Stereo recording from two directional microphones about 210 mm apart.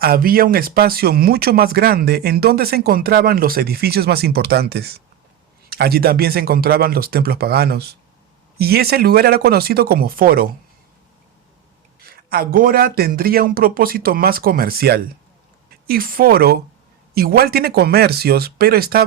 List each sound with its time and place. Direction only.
0.0 s speech: 45° right (ahead or behind)
11.9 s speech: 45° right (ahead or behind)